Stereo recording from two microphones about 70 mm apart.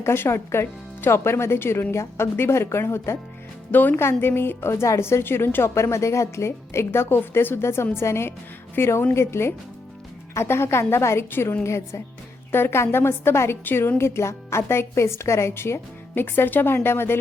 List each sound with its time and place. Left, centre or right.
0.0 s speech: left
3.7 s speech: left